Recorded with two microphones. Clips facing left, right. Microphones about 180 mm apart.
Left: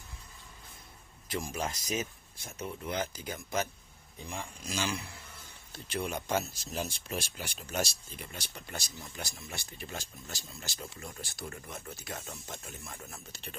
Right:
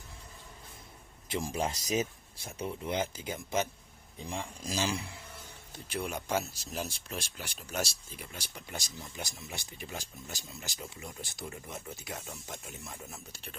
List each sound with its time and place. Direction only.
1.3 s speech: 30° right (ahead or behind)
5.7 s speech: 5° right (ahead or behind)
12.1 s speech: 5° right (ahead or behind)